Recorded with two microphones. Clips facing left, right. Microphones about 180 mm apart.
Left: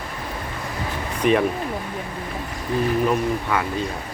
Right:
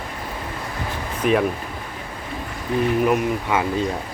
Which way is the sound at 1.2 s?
Centre (ahead or behind).